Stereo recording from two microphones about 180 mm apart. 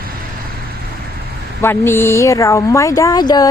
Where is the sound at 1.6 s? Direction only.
15° left (ahead or behind).